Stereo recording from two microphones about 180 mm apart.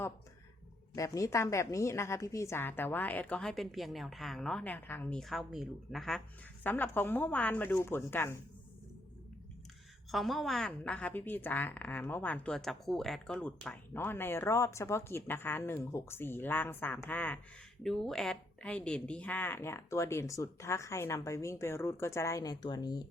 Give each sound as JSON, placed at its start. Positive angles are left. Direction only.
{"t": 0.9, "sound": "a woman's voice", "side_deg": 20}
{"t": 10.1, "sound": "a woman's voice", "side_deg": 0}